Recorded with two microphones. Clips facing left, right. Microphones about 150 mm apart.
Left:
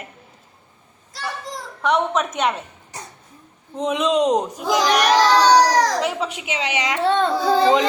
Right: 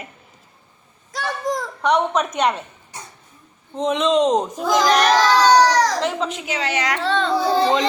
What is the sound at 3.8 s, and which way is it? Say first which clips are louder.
A child's voice: right 1 dB; 10° left (ahead or behind).